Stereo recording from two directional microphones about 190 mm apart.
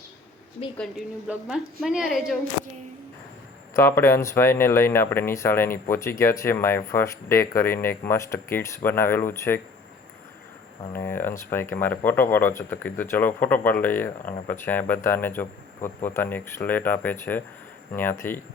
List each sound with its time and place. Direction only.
0.8 s a woman's voice: 5° right (ahead or behind)
3.8 s speech: 15° left (ahead or behind)
10.9 s speech: 10° left (ahead or behind)